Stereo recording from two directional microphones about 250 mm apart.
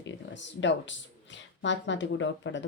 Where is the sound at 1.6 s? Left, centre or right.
Left.